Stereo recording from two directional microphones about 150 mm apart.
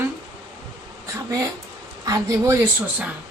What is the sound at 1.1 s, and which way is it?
Speech, 20° right (ahead or behind).